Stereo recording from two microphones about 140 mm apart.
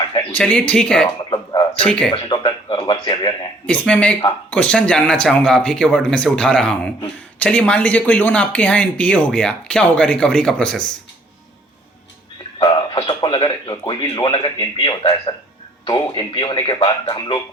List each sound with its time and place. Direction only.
0.3 s speech: 10° left (ahead or behind)
2.1 s speech: 35° left (ahead or behind)
3.7 s speech: 10° left (ahead or behind)
12.5 s speech: 35° left (ahead or behind)